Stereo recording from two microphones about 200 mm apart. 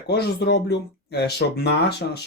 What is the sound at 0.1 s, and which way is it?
Speech, 55° left (ahead or behind).